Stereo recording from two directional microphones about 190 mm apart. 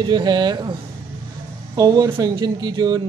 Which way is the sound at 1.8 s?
20° right (ahead or behind).